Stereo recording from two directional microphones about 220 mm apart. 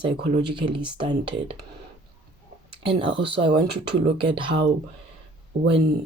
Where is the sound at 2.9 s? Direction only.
25° right (ahead or behind).